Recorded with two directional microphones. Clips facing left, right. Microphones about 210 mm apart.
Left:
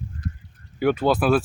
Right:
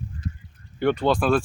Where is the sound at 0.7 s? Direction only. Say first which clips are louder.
Left 1 dB; 5° left (ahead or behind).